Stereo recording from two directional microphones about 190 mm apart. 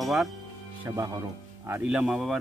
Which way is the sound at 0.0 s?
Centre (ahead or behind).